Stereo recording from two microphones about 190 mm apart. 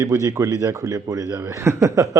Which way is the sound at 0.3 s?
20° right (ahead or behind).